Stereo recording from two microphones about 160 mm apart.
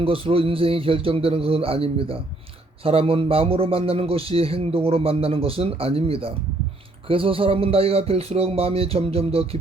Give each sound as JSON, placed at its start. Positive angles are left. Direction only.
{"t": 0.0, "sound": "a man's voice", "side_deg": -35}